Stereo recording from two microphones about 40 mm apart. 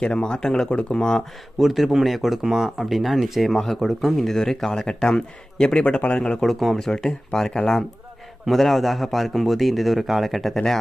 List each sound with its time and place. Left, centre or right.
0.0 s speech: left
0.7 s speech: left
1.5 s a man's voice: centre
3.5 s speech: centre
6.4 s a man's voice: centre
6.7 s a man's voice: centre